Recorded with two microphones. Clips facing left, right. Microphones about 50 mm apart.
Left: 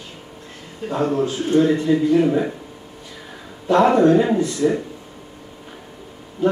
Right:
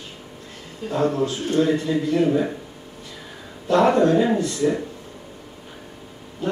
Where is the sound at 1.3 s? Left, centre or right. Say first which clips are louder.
Left 4 dB; left.